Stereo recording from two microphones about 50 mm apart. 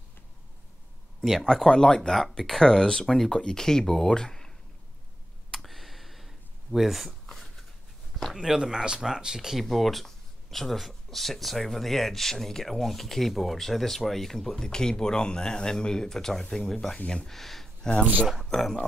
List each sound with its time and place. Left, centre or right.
1.4 s speech: centre
5.5 s a sound: centre
8.4 s speech: centre
9.6 s speech: centre
17.8 s speech: centre
18.3 s speech: centre